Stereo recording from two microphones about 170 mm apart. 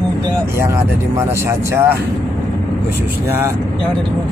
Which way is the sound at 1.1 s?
15° right (ahead or behind).